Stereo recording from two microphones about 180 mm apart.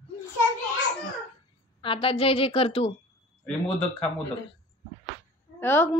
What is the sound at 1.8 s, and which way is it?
A woman's voice, 30° left (ahead or behind).